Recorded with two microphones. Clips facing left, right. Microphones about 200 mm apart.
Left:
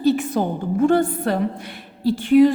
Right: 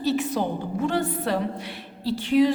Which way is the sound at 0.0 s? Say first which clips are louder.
Left 5 dB; 50° left (ahead or behind).